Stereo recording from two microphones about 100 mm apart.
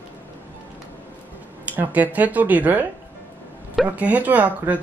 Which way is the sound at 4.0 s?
15° right (ahead or behind).